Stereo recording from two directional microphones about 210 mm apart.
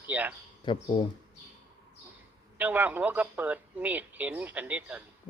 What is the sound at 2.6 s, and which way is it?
Speech, 10° right (ahead or behind).